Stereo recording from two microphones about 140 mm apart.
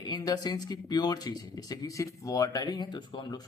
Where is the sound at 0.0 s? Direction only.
30° left (ahead or behind).